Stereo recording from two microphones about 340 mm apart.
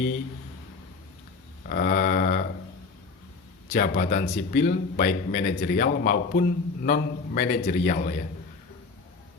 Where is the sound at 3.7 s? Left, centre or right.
Left.